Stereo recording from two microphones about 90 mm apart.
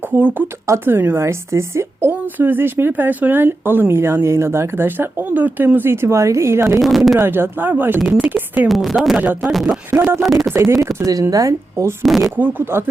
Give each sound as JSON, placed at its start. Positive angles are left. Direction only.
{"t": 0.1, "sound": "a woman's voice", "side_deg": -20}
{"t": 6.8, "sound": "a woman's voice", "side_deg": 0}
{"t": 7.2, "sound": "a woman's voice", "side_deg": -25}
{"t": 8.6, "sound": "a woman's voice", "side_deg": 0}
{"t": 9.9, "sound": "a woman's voice", "side_deg": -25}
{"t": 12.0, "sound": "a woman's voice", "side_deg": 0}
{"t": 12.4, "sound": "a woman's voice", "side_deg": -20}